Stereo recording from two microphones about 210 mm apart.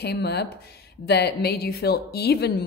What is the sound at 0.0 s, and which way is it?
A woman's voice, 50° left (ahead or behind).